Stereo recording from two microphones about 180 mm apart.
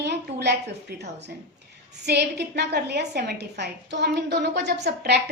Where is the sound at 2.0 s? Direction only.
70° right (ahead or behind).